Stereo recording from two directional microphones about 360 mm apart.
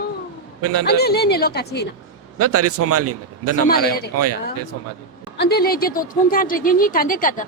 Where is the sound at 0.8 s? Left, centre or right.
Left.